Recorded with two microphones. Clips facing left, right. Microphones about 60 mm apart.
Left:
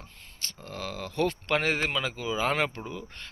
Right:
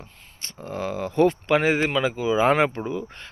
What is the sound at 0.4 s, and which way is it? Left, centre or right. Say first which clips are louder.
Speech: right 8 dB; right.